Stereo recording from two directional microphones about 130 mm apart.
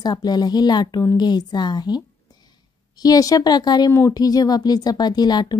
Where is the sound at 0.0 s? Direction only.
30° left (ahead or behind).